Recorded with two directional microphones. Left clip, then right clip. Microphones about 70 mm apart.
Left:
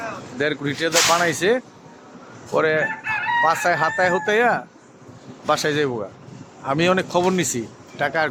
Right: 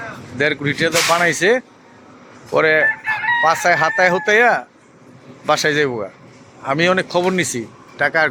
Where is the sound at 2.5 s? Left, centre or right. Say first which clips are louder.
Right 5 dB; right.